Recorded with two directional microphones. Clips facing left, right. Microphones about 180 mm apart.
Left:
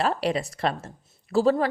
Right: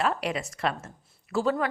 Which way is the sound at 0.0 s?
35° left (ahead or behind).